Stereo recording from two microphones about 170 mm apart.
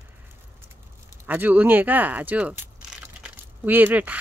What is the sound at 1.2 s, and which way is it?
Speech, 10° right (ahead or behind).